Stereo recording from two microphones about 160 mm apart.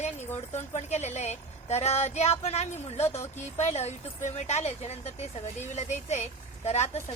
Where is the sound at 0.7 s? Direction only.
45° left (ahead or behind).